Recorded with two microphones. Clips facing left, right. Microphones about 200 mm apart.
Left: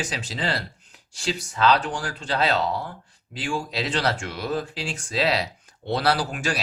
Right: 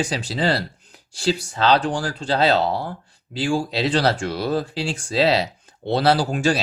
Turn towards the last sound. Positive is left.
turn(degrees=-30)  # may be behind; listen again after turning